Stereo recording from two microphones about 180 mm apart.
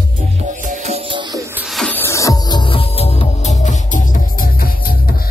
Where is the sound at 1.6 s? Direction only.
Centre (ahead or behind); by 5.2 s 55° left (ahead or behind).